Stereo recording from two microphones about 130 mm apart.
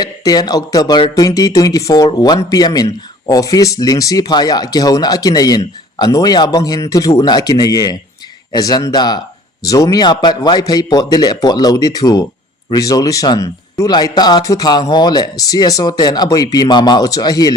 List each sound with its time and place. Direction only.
0.0 s speech: 30° left (ahead or behind)